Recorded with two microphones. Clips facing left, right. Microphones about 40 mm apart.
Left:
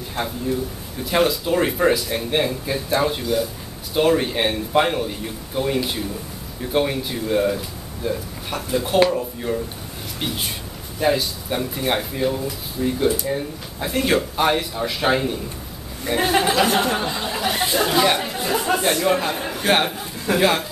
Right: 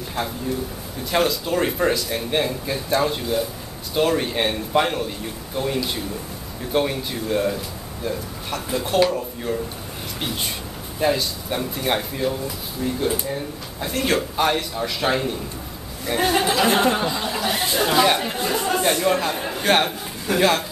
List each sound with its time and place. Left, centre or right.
0.2 s a man's voice: centre
3.2 s a man's voice: centre
3.9 s a man's voice: centre
16.6 s speech: centre
16.9 s a man's voice: centre